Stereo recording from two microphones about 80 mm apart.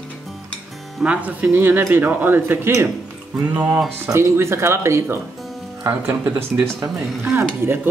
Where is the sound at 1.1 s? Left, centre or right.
Centre.